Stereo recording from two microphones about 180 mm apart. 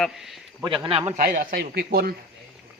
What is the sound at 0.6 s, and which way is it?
Speech, 25° right (ahead or behind).